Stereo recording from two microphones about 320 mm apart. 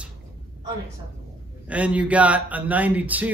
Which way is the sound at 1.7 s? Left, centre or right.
Centre.